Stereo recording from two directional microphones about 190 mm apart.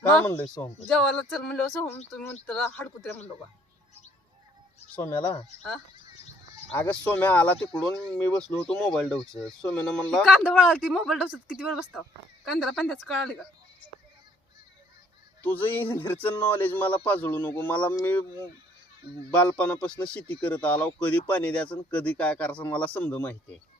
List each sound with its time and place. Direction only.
0.3 s speech: 10° left (ahead or behind)
4.9 s speech: 15° left (ahead or behind)
6.7 s speech: 10° left (ahead or behind)
15.4 s speech: 10° left (ahead or behind)
19.3 s speech: 5° left (ahead or behind)